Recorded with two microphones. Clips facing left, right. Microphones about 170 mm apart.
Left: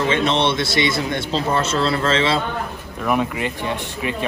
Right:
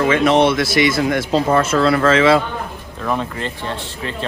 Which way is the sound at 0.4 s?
25° left (ahead or behind).